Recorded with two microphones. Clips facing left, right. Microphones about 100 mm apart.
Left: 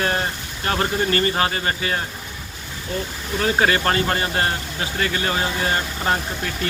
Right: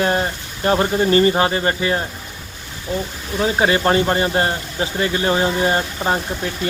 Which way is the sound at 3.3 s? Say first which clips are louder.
Right 2 dB; 15° right (ahead or behind).